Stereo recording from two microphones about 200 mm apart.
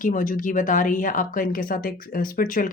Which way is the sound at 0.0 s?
40° left (ahead or behind).